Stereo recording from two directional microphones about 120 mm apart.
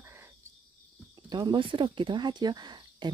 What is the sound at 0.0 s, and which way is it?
Cricket, 20° right (ahead or behind).